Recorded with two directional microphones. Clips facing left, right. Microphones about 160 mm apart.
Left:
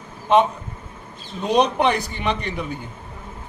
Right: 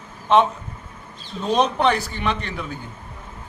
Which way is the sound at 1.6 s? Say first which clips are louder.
Left 1 dB; 15° left (ahead or behind).